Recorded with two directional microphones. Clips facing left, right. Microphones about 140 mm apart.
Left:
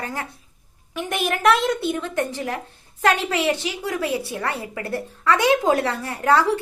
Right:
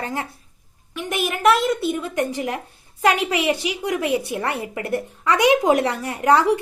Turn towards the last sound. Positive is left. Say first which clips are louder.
# right 2 dB
turn(degrees=-15)  # may be behind; listen again after turning